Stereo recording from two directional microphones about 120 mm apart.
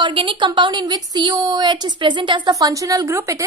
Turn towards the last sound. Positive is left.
turn(degrees=-25)  # may be behind; listen again after turning